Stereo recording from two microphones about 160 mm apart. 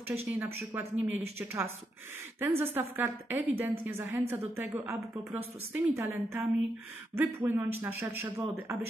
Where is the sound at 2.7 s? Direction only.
10° right (ahead or behind).